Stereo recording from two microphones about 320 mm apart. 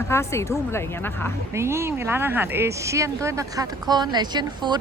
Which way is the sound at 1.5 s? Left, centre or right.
Centre.